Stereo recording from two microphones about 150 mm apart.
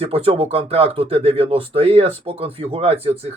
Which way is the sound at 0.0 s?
40° right (ahead or behind).